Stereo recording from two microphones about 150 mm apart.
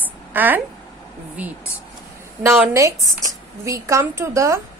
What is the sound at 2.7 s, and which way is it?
Speech, 20° right (ahead or behind).